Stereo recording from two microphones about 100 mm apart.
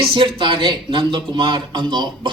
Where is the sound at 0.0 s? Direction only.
55° right (ahead or behind).